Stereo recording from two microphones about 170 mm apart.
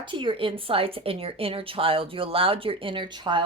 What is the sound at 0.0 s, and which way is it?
Speech, 30° right (ahead or behind).